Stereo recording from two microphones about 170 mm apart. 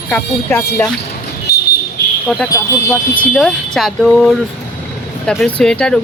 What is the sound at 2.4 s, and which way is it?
Speech, 20° left (ahead or behind).